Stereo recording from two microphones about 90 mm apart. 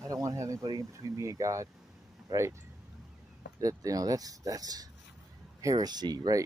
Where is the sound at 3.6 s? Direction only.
40° right (ahead or behind).